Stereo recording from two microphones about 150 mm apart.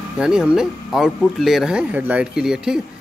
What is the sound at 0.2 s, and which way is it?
Speech, 5° right (ahead or behind).